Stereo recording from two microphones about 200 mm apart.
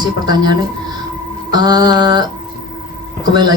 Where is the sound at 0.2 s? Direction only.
20° right (ahead or behind).